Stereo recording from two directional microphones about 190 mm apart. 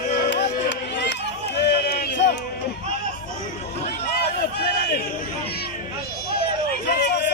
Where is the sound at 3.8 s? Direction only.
60° left (ahead or behind).